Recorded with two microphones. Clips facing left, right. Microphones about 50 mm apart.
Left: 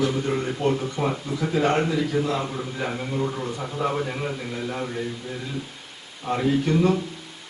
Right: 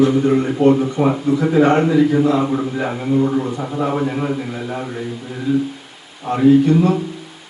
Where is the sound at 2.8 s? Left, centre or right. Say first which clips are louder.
Right 8 dB; centre.